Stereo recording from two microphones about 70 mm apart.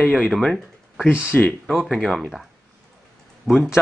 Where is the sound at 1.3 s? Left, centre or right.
Left.